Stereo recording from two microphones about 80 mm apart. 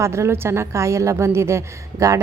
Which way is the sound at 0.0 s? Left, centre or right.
Right.